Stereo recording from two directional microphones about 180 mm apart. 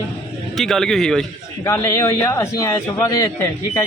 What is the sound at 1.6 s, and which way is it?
Speech, 15° left (ahead or behind).